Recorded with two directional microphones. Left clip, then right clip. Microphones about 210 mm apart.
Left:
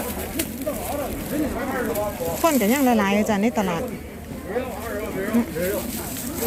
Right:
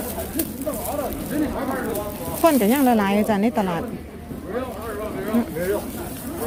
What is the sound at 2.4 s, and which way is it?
Speech, 20° right (ahead or behind).